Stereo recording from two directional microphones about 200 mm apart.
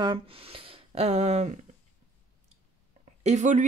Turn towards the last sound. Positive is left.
turn(degrees=-35)  # may be behind; listen again after turning